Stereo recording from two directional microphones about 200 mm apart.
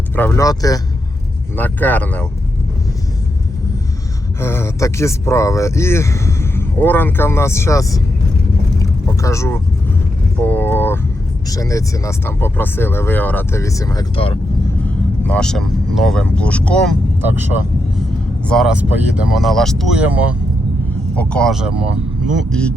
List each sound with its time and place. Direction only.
0.2 s speech: 15° left (ahead or behind)
4.4 s speech: 10° left (ahead or behind)
8.8 s vehicle: 15° left (ahead or behind)
11.4 s speech: 15° left (ahead or behind)
14.8 s vehicle: 5° left (ahead or behind)
16.0 s speech: 5° left (ahead or behind)
17.2 s speech: 10° right (ahead or behind)
21.2 s speech: 5° left (ahead or behind)